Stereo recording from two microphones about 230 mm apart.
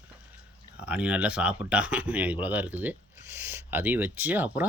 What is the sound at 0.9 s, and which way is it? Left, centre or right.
Speech, centre.